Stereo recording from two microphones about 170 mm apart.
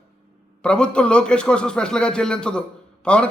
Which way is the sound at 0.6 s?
5° left (ahead or behind).